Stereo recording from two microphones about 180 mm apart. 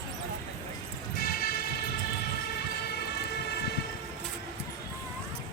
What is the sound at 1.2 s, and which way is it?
Vehicle, 55° left (ahead or behind).